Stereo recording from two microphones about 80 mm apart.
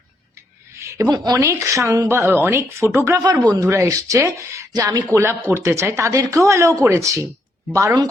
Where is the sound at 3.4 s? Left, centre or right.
Right.